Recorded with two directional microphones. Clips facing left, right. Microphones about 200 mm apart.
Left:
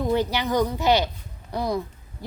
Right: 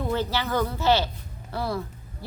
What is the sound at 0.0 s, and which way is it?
A woman's voice, 15° left (ahead or behind).